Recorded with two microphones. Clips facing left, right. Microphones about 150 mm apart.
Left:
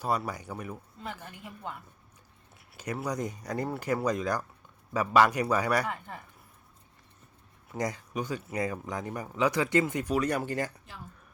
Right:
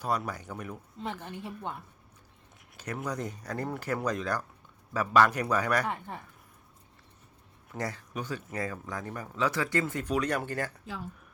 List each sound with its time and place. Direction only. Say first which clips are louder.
0.0 s speech: left 1 dB; 10° left (ahead or behind)
0.9 s a woman's voice: right 4 dB; 25° right (ahead or behind)
2.7 s speech: left 2 dB; 10° left (ahead or behind)
7.7 s speech: left 3 dB; 15° left (ahead or behind)